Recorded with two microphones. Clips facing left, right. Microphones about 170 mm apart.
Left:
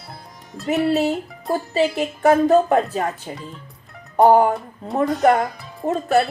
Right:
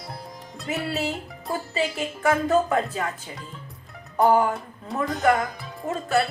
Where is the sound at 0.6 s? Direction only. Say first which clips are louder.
Left 9 dB; 40° left (ahead or behind).